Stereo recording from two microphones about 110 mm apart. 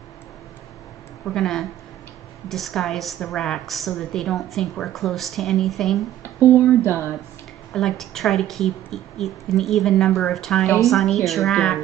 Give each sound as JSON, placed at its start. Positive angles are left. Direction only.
{"t": 1.2, "sound": "a woman's voice", "side_deg": 5}
{"t": 6.2, "sound": "speech", "side_deg": 25}
{"t": 7.7, "sound": "a woman's voice", "side_deg": 5}